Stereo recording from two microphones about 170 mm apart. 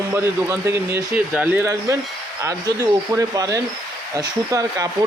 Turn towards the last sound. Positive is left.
turn(degrees=-20)  # may be behind; listen again after turning